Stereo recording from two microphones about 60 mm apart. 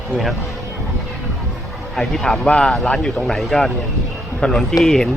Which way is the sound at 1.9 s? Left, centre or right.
Centre.